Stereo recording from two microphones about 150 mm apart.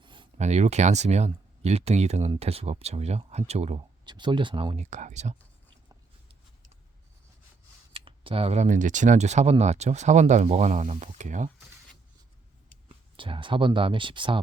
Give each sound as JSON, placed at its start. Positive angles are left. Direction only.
{"t": 0.0, "sound": "a sound", "side_deg": -30}
{"t": 0.3, "sound": "speech", "side_deg": -50}
{"t": 4.0, "sound": "speech", "side_deg": -30}
{"t": 4.8, "sound": "speech", "side_deg": -50}
{"t": 7.9, "sound": "speech", "side_deg": -35}
{"t": 13.1, "sound": "speech", "side_deg": -35}